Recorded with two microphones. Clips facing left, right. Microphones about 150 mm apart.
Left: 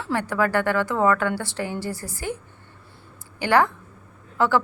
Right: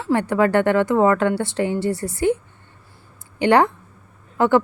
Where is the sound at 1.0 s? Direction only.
20° right (ahead or behind).